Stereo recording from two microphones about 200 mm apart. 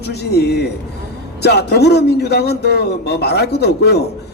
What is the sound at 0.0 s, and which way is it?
A man's voice, 55° left (ahead or behind).